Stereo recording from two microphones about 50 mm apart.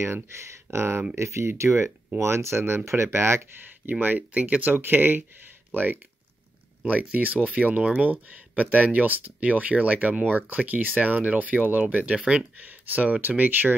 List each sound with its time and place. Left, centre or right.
0.0 s speech: right
1.1 s speech: right
3.9 s speech: right
7.8 s speech: centre
8.1 s speech: right
12.5 s speech: right